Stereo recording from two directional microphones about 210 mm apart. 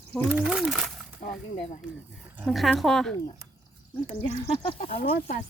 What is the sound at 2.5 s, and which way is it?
Speech, centre (ahead or behind).